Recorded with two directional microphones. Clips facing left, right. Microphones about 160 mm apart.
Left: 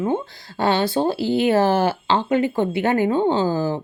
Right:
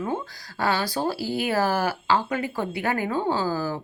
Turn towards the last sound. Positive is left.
turn(degrees=25)  # may be behind; listen again after turning